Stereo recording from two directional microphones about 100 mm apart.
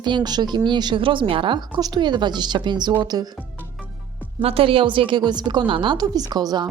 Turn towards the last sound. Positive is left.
turn(degrees=-45)  # may be behind; listen again after turning